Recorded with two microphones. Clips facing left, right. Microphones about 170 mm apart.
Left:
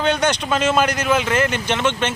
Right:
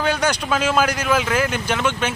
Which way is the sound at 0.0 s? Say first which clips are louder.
Left 2 dB; 5° right (ahead or behind).